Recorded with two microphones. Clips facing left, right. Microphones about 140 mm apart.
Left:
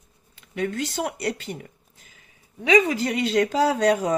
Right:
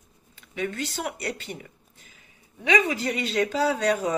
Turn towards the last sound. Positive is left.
turn(degrees=45)  # may be behind; listen again after turning